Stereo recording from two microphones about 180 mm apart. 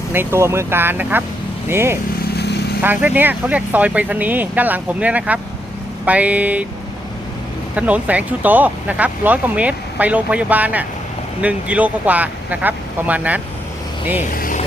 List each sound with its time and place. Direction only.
0.1 s speech: 10° right (ahead or behind)
2.3 s vehicle: 70° left (ahead or behind)
2.8 s speech: 10° right (ahead or behind)
7.8 s speech: 10° right (ahead or behind)
14.3 s speech: 50° left (ahead or behind)